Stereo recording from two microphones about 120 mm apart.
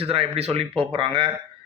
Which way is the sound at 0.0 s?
55° right (ahead or behind).